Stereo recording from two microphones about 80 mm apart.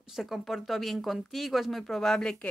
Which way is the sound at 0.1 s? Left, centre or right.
Centre.